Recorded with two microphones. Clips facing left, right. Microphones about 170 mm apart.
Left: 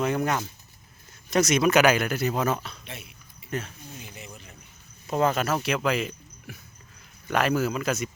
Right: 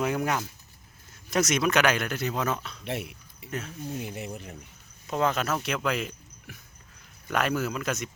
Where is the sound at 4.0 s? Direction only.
55° right (ahead or behind).